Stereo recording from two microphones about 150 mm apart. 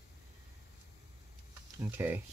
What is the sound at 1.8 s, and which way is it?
Speech, 15° right (ahead or behind).